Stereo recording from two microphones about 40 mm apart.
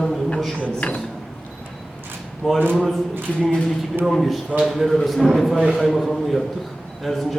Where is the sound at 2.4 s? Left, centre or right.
Centre.